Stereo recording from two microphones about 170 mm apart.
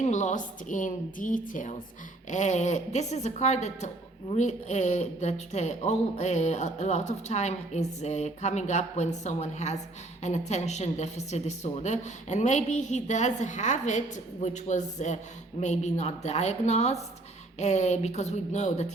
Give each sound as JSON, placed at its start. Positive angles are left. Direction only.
{"t": 0.0, "sound": "a woman's voice", "side_deg": 45}